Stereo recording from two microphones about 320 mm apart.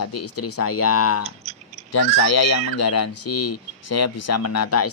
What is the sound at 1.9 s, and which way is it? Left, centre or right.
Speech, left.